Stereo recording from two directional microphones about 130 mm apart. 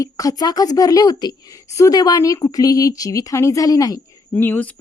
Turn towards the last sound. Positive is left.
turn(degrees=15)  # may be behind; listen again after turning